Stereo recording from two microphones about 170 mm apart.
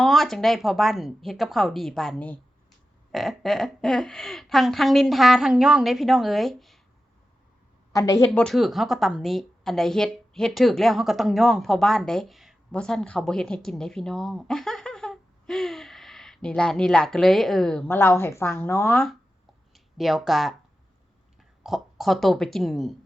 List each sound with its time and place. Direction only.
0.0 s speech: centre (ahead or behind)
7.9 s speech: 20° left (ahead or behind)
8.3 s a woman's voice: centre (ahead or behind)
17.8 s speech: 15° left (ahead or behind)
19.7 s speech: centre (ahead or behind)
21.6 s speech: centre (ahead or behind)